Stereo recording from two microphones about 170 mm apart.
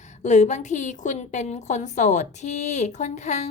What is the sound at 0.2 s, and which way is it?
A woman's voice, 45° left (ahead or behind).